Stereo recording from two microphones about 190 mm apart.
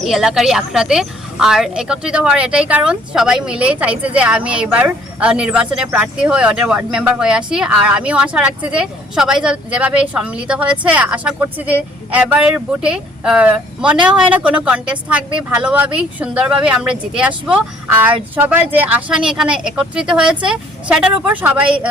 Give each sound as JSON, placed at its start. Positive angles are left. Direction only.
{"t": 0.0, "sound": "speech", "side_deg": 0}